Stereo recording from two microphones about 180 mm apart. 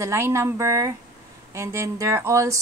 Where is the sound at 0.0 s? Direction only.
15° right (ahead or behind).